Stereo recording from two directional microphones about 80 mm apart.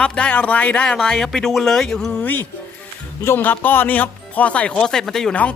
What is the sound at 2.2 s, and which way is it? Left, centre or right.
Speech, left.